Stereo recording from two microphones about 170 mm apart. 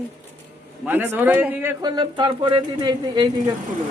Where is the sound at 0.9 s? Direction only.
10° right (ahead or behind).